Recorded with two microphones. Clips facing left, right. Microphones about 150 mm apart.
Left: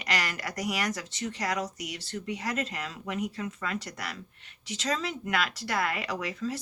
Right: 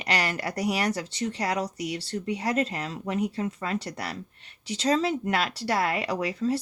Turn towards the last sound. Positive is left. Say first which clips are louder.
# right 6 dB
turn(degrees=-35)  # may be behind; listen again after turning